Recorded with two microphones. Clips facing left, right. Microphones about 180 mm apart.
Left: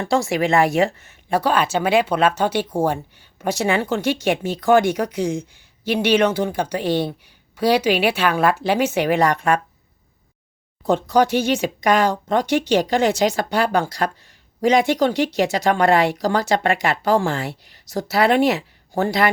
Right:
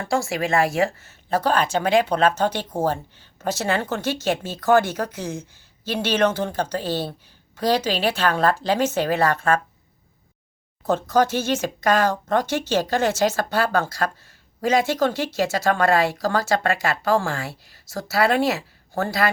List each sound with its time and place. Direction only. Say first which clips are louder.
0.0 s speech: left 4 dB; 20° left (ahead or behind)
11.1 s speech: left 3 dB; 15° left (ahead or behind)